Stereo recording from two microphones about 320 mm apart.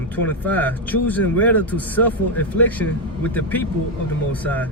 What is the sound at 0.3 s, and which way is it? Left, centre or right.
Speech, centre.